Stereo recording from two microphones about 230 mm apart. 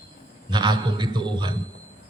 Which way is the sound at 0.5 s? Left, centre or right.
Centre.